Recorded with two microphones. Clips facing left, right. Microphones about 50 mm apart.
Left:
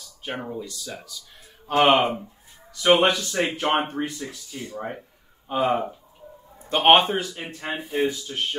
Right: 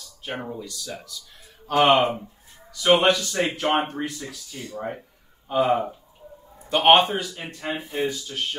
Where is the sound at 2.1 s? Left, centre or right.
Centre.